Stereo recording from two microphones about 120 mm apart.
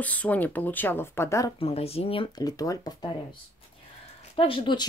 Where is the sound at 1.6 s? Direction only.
55° left (ahead or behind).